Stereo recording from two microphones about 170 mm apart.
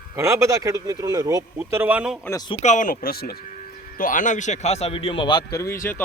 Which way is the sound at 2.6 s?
45° left (ahead or behind).